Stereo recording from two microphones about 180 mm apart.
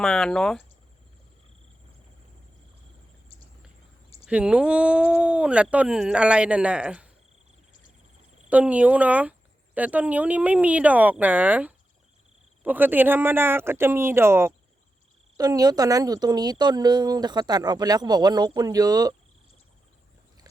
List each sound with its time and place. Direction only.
0.0 s speech: 5° left (ahead or behind)
4.3 s speech: 5° right (ahead or behind)
8.4 s speech: 5° right (ahead or behind)